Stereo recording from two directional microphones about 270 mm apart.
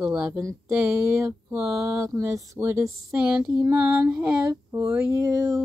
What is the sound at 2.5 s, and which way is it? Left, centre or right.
Female singing, centre.